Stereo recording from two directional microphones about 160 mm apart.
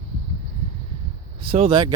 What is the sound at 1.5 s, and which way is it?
Speech, 30° right (ahead or behind).